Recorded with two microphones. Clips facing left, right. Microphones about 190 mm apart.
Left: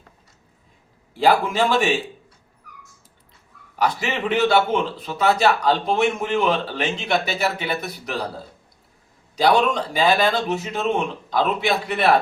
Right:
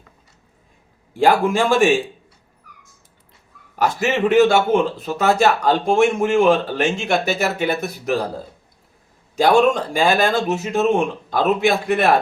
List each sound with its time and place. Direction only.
1.1 s a man's voice: 50° right (ahead or behind)
3.8 s a man's voice: 45° right (ahead or behind)
9.3 s a man's voice: 50° right (ahead or behind)